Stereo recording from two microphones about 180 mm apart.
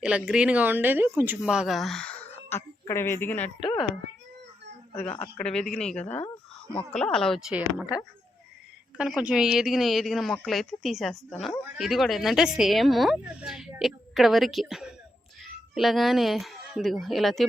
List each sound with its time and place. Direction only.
0.0 s speech: 5° right (ahead or behind); by 3.5 s 10° left (ahead or behind)
3.6 s speech: 25° left (ahead or behind)
5.0 s speech: 30° left (ahead or behind)
5.4 s speech: 5° left (ahead or behind)
6.1 s a sound: 25° left (ahead or behind)
6.7 s speech: 5° left (ahead or behind)
9.0 s speech: 5° right (ahead or behind)